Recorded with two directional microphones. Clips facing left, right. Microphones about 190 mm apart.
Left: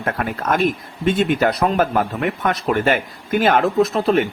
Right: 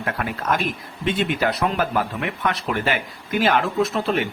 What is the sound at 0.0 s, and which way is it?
Speech, 50° left (ahead or behind).